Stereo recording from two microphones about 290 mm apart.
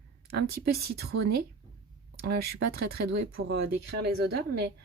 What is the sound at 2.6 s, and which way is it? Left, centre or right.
Speech, right.